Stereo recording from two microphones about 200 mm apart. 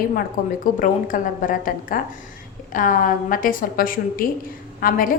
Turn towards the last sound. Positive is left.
turn(degrees=45)  # may be behind; listen again after turning